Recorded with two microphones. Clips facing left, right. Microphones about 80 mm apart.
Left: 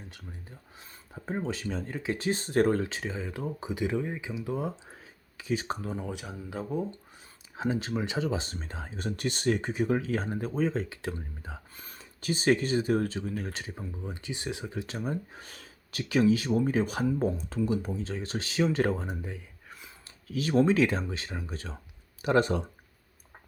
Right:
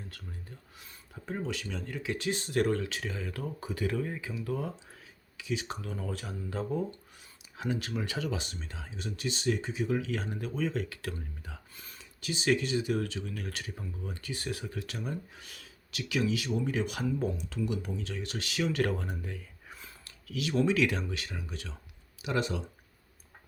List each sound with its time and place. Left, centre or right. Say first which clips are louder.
0.8 s speech: left 3 dB; left
5.4 s speech: left 4 dB; left
6.0 s speech: left 1 dB; centre
7.5 s speech: left 4 dB; left
11.8 s speech: left 2 dB; left
20.1 s speech: left 4 dB; left